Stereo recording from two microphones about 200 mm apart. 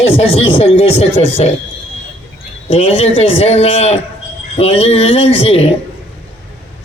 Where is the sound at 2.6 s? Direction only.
30° left (ahead or behind).